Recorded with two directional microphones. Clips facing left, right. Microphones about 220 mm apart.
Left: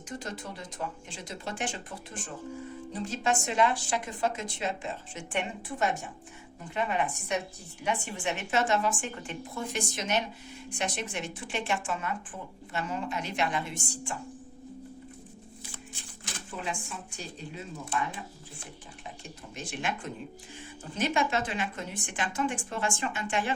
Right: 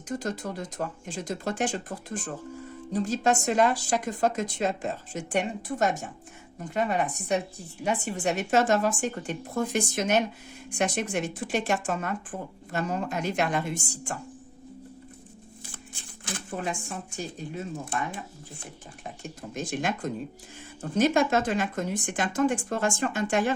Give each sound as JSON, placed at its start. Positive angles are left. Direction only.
{"t": 0.1, "sound": "speech", "side_deg": -40}
{"t": 16.2, "sound": "a sound", "side_deg": -45}
{"t": 19.5, "sound": "speech", "side_deg": -45}